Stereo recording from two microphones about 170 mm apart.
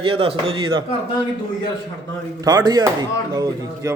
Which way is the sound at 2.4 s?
25° right (ahead or behind).